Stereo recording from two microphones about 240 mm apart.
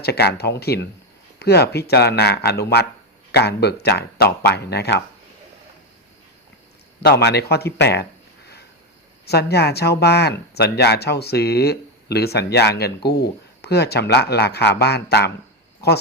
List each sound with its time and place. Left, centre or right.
0.0 s speech: left
7.0 s speech: left
9.2 s speech: left